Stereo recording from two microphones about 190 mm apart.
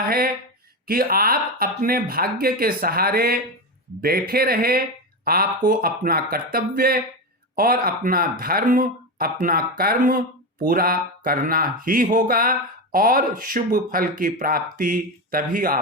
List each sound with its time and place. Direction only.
0.9 s speech: 50° right (ahead or behind)